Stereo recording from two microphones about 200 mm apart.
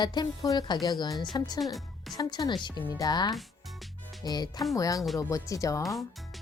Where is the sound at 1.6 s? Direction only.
Centre (ahead or behind).